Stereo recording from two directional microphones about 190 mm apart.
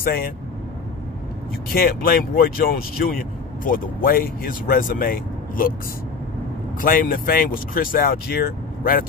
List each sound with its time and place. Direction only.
0.0 s speech: 50° left (ahead or behind)
1.7 s speech: 50° left (ahead or behind)
6.8 s speech: 50° left (ahead or behind)